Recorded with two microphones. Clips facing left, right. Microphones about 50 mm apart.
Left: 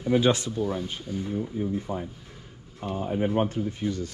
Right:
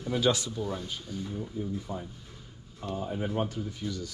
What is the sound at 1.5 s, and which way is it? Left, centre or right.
Speech, left.